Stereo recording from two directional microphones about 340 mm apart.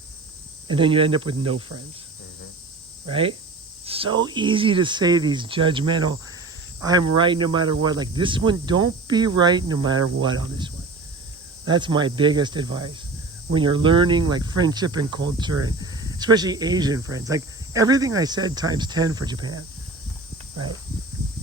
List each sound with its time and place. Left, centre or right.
0.7 s speech: centre
3.1 s speech: centre
7.2 s speech: centre